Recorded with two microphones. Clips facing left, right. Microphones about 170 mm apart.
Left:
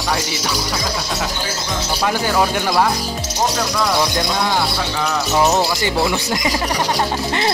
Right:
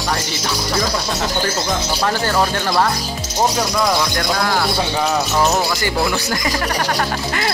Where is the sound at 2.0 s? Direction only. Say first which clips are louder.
Left 1 dB; 10° left (ahead or behind).